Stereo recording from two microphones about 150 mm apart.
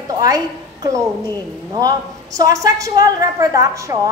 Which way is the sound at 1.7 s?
25° right (ahead or behind).